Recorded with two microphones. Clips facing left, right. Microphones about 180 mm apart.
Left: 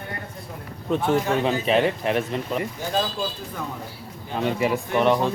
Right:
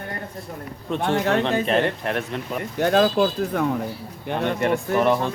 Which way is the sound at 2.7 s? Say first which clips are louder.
Right 8 dB; 65° right (ahead or behind).